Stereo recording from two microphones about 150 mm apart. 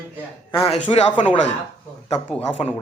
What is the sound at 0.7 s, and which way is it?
Speech, 40° left (ahead or behind).